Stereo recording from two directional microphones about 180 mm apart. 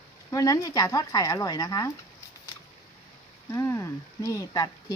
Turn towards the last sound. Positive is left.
turn(degrees=20)  # may be behind; listen again after turning